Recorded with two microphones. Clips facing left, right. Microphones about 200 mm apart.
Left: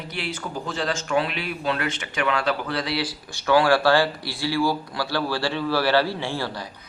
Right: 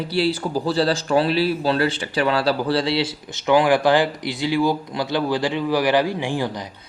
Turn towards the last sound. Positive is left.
turn(degrees=-15)  # may be behind; listen again after turning